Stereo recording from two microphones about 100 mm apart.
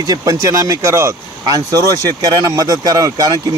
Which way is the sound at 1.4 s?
40° right (ahead or behind).